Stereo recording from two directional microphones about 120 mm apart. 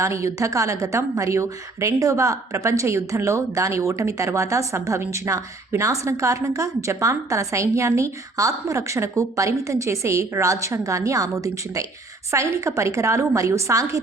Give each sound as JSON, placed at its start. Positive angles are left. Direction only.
{"t": 0.0, "sound": "a woman's voice", "side_deg": -25}